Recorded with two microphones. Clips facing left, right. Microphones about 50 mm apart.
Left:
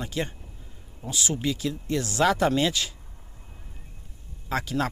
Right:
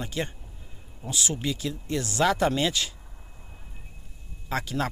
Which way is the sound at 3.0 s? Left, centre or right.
Centre.